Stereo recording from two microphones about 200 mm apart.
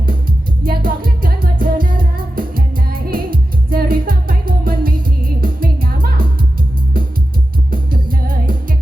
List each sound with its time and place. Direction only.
0.6 s music: 45° right (ahead or behind)
7.7 s music: 45° right (ahead or behind)